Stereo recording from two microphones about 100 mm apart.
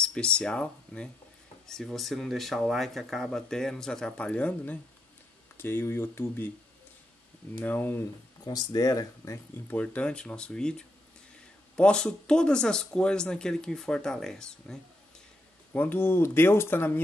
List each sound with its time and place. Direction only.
0.0 s speech: 10° left (ahead or behind)
7.6 s speech: 20° left (ahead or behind)
8.5 s speech: 40° left (ahead or behind)
9.7 s speech: 15° left (ahead or behind)
15.7 s speech: 20° left (ahead or behind)